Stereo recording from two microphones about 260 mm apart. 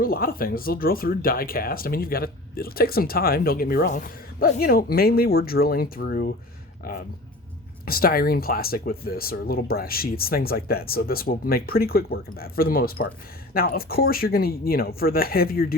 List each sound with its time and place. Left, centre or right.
0.0 s speech: left
7.9 s speech: left